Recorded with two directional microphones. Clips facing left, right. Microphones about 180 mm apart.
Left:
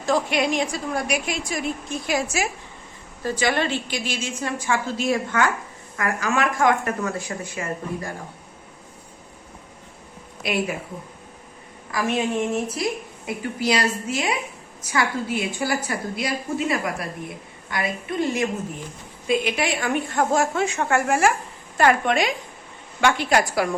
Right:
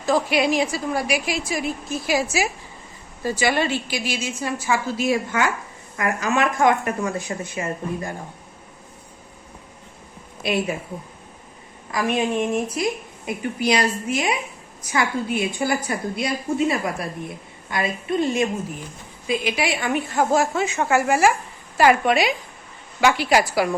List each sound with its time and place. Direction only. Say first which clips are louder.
0.0 s a woman's voice: right 2 dB; 5° right (ahead or behind)
3.2 s a woman's voice: right 1 dB; 10° right (ahead or behind)
6.0 s a woman's voice: right 2 dB; 20° right (ahead or behind)
10.4 s a woman's voice: right 2 dB; 25° right (ahead or behind)
11.9 s a woman's voice: right 1 dB; 20° right (ahead or behind)
19.3 s a woman's voice: left 1 dB; 5° right (ahead or behind)